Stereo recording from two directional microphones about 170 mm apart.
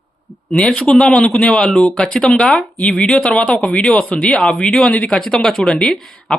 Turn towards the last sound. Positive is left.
turn(degrees=5)  # may be behind; listen again after turning